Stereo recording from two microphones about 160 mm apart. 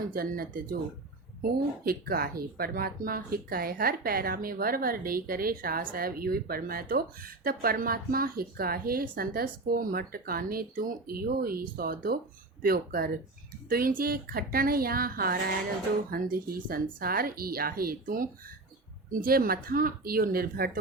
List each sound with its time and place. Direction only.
0.1 s speech: 65° right (ahead or behind)